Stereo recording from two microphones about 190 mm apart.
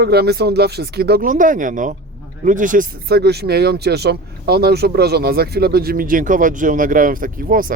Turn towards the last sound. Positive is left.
turn(degrees=-45)  # may be behind; listen again after turning